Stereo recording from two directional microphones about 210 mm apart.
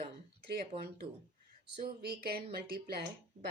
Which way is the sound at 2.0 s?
50° right (ahead or behind).